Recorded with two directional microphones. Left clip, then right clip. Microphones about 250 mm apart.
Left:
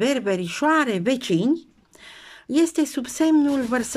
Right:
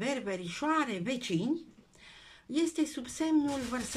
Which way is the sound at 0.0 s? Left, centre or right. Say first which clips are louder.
Left 12 dB; left.